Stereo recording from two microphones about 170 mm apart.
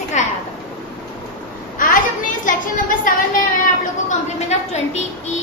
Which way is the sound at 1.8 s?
50° left (ahead or behind).